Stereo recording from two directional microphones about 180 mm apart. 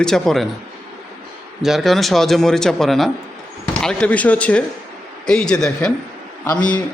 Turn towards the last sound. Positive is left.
turn(degrees=5)  # may be behind; listen again after turning